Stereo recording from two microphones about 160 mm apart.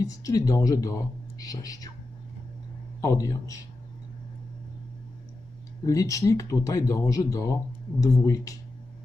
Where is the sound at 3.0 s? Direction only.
20° left (ahead or behind).